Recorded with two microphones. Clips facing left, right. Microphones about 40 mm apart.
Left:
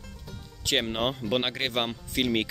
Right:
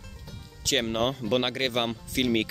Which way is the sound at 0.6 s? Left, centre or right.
Centre.